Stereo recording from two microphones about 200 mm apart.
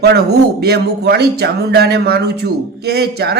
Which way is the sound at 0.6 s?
55° right (ahead or behind).